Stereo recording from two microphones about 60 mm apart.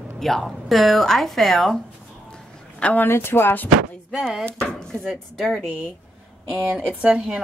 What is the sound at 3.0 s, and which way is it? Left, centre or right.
Speech, left.